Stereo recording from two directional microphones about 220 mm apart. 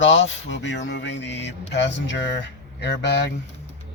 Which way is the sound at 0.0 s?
55° left (ahead or behind).